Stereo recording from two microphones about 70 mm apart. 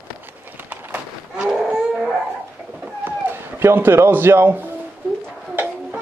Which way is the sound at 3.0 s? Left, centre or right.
Right.